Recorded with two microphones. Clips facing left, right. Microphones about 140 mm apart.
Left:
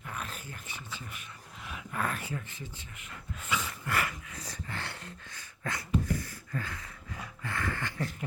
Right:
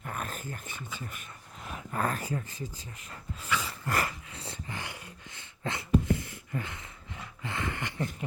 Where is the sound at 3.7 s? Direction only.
40° right (ahead or behind).